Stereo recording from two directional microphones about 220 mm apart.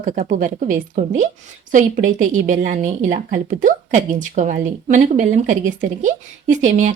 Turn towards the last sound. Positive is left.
turn(degrees=-35)  # may be behind; listen again after turning